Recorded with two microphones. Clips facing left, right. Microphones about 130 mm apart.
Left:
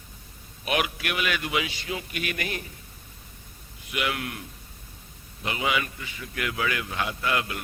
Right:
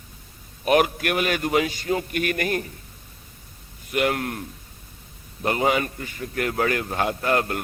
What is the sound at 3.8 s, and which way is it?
Speech, 45° right (ahead or behind).